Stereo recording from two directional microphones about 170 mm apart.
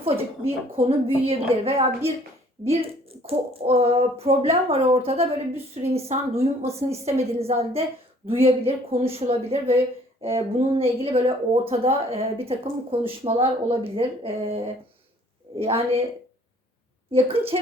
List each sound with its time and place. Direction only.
0.0 s speech: 35° right (ahead or behind)
17.1 s a woman's voice: 35° right (ahead or behind)